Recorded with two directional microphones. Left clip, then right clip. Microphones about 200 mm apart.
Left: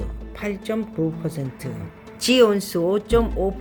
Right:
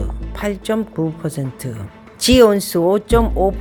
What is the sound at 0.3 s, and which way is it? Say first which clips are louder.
Speech: right 6 dB; 45° right (ahead or behind).